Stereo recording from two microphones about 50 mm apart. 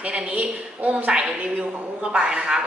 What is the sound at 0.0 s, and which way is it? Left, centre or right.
A woman's voice, right.